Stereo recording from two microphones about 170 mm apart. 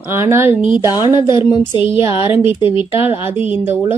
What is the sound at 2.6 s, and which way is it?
Speech, 30° left (ahead or behind).